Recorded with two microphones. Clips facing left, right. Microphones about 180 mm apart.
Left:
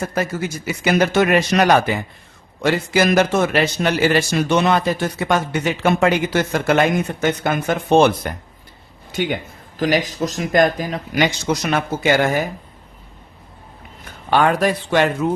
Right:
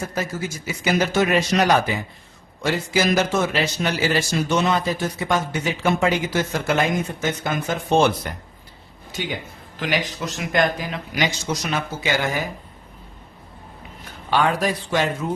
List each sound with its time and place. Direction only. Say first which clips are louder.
0.0 s a man's voice: left 4 dB; 65° left (ahead or behind)
9.7 s speech: left 6 dB; 40° left (ahead or behind)
14.3 s a man's voice: left 4 dB; 55° left (ahead or behind)